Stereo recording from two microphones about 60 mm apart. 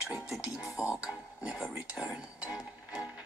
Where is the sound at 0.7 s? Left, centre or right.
Left.